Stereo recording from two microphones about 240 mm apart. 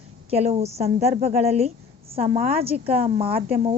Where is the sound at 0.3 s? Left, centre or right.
Right.